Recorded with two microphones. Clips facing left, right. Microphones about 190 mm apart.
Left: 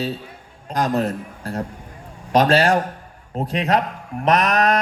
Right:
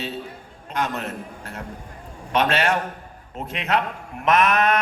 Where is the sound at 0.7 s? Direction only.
35° left (ahead or behind).